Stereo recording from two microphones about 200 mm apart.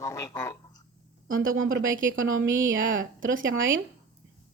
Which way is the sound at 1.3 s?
45° right (ahead or behind).